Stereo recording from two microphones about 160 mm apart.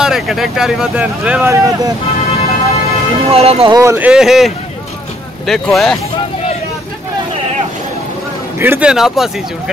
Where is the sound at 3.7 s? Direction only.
20° right (ahead or behind); by 6.0 s 5° left (ahead or behind).